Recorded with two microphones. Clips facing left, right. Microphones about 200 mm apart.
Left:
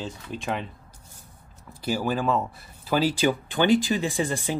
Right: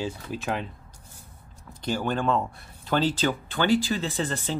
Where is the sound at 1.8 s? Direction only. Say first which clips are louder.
Left 1 dB; 5° left (ahead or behind).